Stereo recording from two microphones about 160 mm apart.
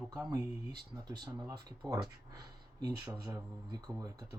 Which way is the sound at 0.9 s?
25° right (ahead or behind).